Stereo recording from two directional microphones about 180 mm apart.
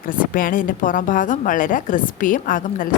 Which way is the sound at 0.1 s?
50° left (ahead or behind).